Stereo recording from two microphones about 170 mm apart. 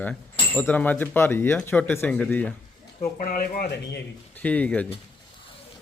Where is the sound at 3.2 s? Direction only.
55° left (ahead or behind).